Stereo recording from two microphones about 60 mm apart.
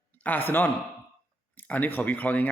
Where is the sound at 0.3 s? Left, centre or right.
Left.